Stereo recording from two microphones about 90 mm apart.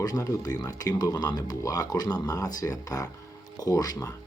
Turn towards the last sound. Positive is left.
turn(degrees=45)  # may be behind; listen again after turning